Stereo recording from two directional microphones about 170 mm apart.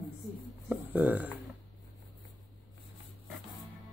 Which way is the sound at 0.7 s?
10° right (ahead or behind).